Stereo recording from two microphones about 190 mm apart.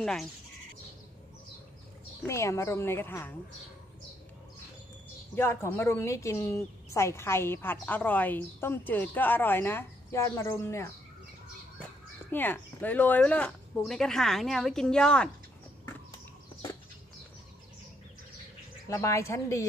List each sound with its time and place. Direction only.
0.0 s speech: 5° left (ahead or behind)
2.2 s a woman's voice: 15° left (ahead or behind)
5.3 s a woman's voice: 10° left (ahead or behind)
12.3 s speech: 10° left (ahead or behind)
18.9 s a woman's voice: 15° left (ahead or behind)